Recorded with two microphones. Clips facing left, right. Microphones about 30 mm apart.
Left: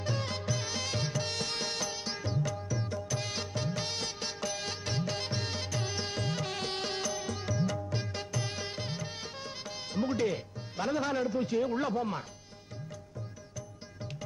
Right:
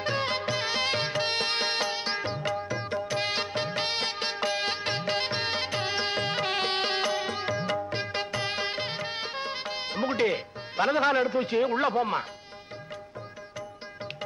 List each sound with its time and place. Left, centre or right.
0.0 s music: right